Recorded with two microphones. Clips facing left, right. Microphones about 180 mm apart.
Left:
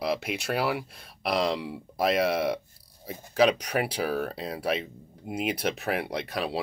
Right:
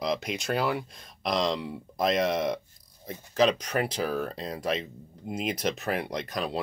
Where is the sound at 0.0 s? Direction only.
5° left (ahead or behind).